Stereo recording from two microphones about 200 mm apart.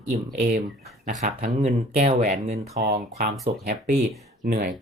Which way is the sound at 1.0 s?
45° right (ahead or behind).